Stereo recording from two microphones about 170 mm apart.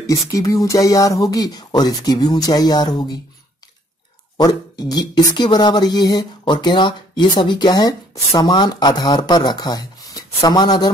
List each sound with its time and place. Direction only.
0.3 s speech: 20° left (ahead or behind)
4.4 s speech: 25° left (ahead or behind)